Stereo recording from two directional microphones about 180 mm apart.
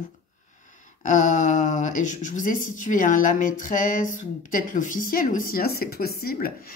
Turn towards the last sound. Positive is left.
turn(degrees=55)  # may be behind; listen again after turning